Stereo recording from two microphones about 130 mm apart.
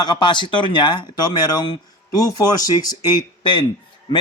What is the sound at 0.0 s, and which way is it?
Speech, 35° left (ahead or behind).